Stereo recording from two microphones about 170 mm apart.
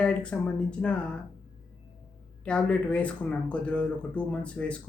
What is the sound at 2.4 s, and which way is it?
Speech, 5° left (ahead or behind).